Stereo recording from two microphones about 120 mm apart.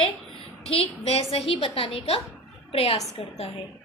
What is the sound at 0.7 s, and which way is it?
A woman's voice, 60° left (ahead or behind).